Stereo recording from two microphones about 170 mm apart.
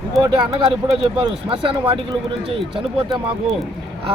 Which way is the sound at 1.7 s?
30° right (ahead or behind).